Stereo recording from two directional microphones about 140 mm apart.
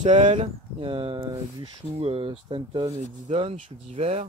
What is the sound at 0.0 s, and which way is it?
Speech, 55° right (ahead or behind).